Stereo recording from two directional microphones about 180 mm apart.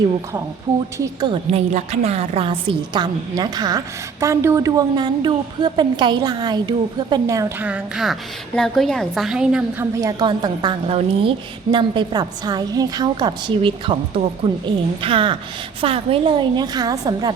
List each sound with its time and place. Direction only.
0.9 s a woman's voice: 20° right (ahead or behind)
1.5 s a woman's voice: 35° right (ahead or behind); by 9.8 s 5° right (ahead or behind)
9.9 s a woman's voice: 20° right (ahead or behind)
15.0 s a woman's voice: 30° right (ahead or behind)